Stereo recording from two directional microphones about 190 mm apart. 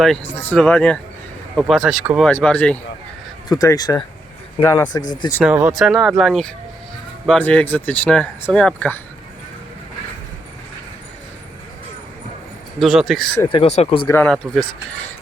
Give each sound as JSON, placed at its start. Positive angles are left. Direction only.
{"t": 0.0, "sound": "speech", "side_deg": 5}
{"t": 3.5, "sound": "speech", "side_deg": 20}
{"t": 5.4, "sound": "speech", "side_deg": -5}
{"t": 12.8, "sound": "speech", "side_deg": 0}
{"t": 13.5, "sound": "speech", "side_deg": 30}
{"t": 14.1, "sound": "speech", "side_deg": 5}